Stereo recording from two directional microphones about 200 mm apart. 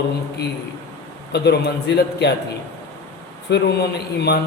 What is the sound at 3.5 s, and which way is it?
Speech, 60° left (ahead or behind).